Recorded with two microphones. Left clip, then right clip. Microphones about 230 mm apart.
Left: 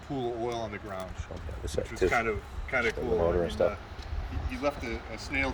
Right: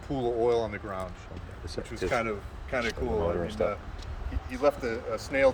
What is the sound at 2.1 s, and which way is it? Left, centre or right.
Speech, centre.